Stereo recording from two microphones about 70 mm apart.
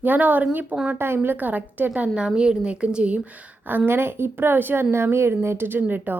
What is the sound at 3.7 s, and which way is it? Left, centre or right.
A woman's voice, right.